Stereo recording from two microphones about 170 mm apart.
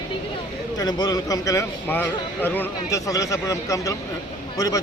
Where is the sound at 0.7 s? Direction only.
25° left (ahead or behind).